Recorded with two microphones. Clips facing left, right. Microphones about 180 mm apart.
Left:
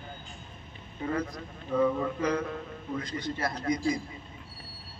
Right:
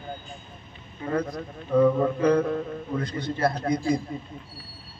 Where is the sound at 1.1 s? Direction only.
55° right (ahead or behind).